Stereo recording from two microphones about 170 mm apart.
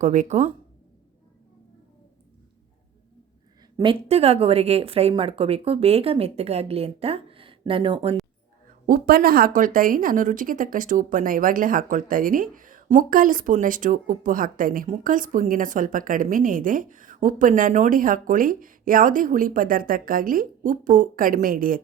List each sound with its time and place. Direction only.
0.0 s speech: 45° right (ahead or behind)
4.1 s a woman's voice: 35° right (ahead or behind)
8.6 s speech: 60° right (ahead or behind)